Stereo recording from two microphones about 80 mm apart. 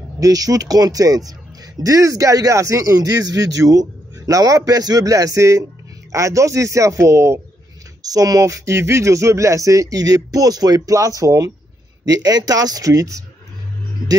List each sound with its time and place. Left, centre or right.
0.2 s speech: right
8.0 s speech: right